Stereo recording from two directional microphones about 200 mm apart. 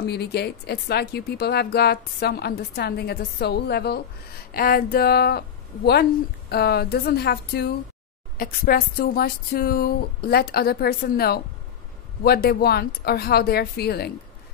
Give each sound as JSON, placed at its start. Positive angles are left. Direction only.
{"t": 0.0, "sound": "speech", "side_deg": 55}
{"t": 6.5, "sound": "speech", "side_deg": 50}